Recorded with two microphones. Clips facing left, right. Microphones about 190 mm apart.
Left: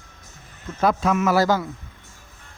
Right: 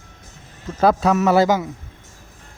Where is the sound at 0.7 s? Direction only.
35° right (ahead or behind).